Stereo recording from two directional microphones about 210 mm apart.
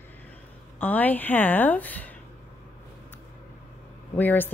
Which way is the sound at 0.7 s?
10° left (ahead or behind).